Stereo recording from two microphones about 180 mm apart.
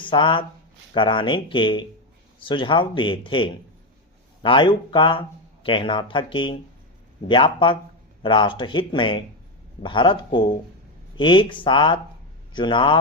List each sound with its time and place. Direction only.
0.0 s speech: 25° left (ahead or behind)